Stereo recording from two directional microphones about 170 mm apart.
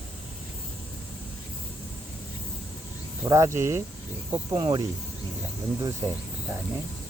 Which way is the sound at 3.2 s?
20° right (ahead or behind).